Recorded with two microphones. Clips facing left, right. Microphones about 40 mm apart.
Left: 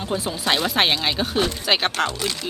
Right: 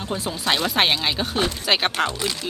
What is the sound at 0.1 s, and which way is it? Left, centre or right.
Speech, centre.